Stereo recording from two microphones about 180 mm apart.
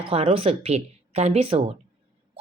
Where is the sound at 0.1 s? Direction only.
35° right (ahead or behind).